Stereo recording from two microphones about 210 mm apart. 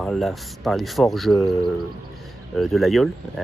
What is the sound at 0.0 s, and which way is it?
Speech, centre (ahead or behind).